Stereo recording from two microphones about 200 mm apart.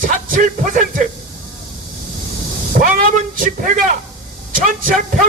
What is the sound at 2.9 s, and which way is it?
Speech, 40° right (ahead or behind).